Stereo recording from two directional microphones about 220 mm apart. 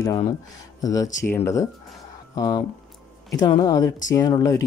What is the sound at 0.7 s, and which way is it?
Speech, 15° left (ahead or behind).